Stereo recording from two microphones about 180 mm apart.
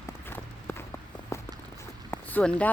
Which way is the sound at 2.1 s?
10° left (ahead or behind).